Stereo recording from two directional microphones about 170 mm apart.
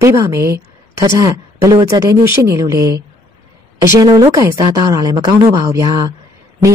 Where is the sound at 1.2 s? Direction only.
20° right (ahead or behind).